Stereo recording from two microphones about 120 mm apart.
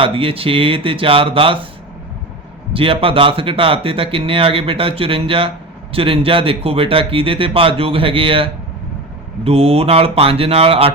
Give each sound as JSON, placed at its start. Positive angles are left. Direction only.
{"t": 0.0, "sound": "speech", "side_deg": -50}
{"t": 2.7, "sound": "speech", "side_deg": -50}